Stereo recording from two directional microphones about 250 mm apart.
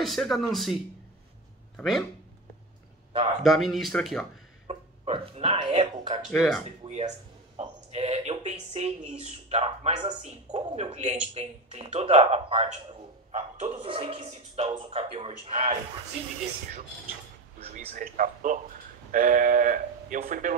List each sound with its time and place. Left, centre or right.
0.0 s speech: centre
1.8 s speech: centre
3.4 s speech: centre
4.6 s speech: right
6.3 s speech: centre
6.6 s a man's voice: right
17.6 s speech: right